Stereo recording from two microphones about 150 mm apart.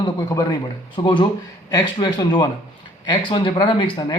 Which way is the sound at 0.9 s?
30° left (ahead or behind).